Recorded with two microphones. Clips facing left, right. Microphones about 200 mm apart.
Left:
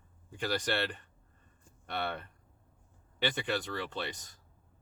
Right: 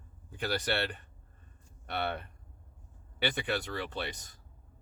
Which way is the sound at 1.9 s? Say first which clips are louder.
Right 2 dB; 10° right (ahead or behind).